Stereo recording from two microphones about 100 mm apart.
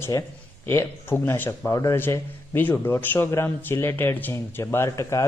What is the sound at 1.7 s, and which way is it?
Speech, 35° left (ahead or behind).